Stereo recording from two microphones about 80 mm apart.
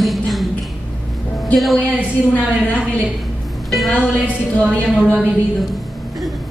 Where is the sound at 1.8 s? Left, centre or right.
Centre.